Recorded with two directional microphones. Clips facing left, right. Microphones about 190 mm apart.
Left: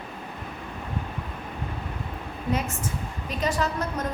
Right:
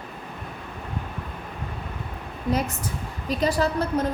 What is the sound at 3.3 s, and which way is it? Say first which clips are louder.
Speech: right 4 dB; 35° right (ahead or behind).